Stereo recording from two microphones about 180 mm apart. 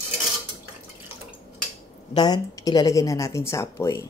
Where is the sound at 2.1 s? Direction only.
25° left (ahead or behind).